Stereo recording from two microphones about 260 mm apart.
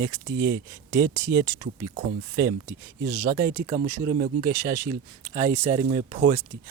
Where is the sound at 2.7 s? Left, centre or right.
Centre.